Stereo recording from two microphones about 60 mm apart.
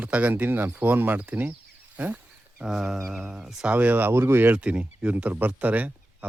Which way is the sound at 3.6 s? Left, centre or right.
Right.